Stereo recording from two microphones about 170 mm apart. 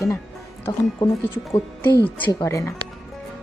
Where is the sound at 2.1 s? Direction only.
10° left (ahead or behind).